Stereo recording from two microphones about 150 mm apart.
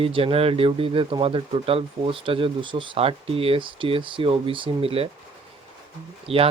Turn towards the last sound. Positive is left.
turn(degrees=-40)  # may be behind; listen again after turning